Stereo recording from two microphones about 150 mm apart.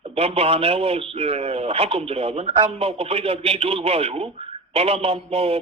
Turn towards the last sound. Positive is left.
turn(degrees=-40)  # may be behind; listen again after turning